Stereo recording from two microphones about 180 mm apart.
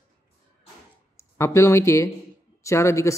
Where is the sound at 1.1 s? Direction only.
15° left (ahead or behind).